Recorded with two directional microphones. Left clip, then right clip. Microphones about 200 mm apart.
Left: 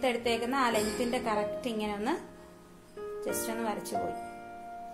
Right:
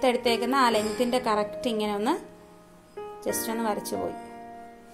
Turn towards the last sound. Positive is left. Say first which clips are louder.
# right 5 dB
turn(degrees=-35)  # may be behind; listen again after turning